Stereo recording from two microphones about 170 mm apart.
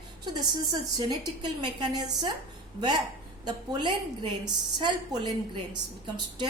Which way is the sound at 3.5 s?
25° right (ahead or behind).